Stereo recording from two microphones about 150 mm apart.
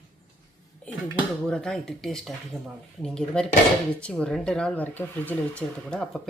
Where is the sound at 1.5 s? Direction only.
5° left (ahead or behind).